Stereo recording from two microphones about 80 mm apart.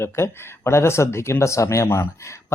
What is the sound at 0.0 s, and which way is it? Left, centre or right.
Speech, left.